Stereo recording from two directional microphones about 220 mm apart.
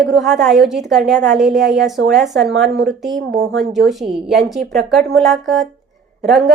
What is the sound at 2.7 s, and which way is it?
Speech, 50° right (ahead or behind).